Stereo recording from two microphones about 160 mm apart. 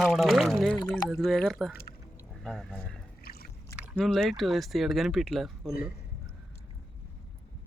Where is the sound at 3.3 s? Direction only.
75° left (ahead or behind).